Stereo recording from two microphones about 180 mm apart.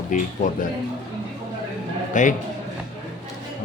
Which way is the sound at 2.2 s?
45° left (ahead or behind).